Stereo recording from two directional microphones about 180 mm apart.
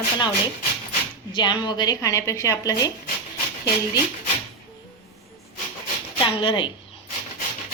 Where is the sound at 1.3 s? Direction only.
25° left (ahead or behind).